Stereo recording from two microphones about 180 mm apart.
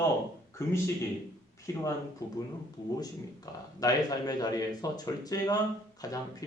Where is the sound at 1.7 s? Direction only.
15° left (ahead or behind).